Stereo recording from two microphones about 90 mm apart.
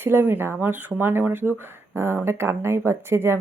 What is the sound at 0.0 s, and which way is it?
A woman's voice, 25° right (ahead or behind).